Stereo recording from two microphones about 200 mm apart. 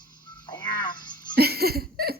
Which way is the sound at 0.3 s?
20° left (ahead or behind).